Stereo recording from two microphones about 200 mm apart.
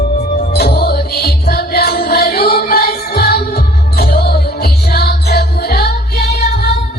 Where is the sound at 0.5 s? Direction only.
50° left (ahead or behind).